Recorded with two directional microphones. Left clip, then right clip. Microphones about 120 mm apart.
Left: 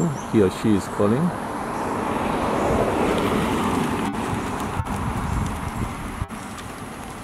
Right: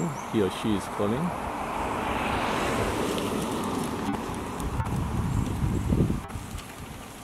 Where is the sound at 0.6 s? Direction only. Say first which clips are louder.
Left 7 dB; 45° right (ahead or behind).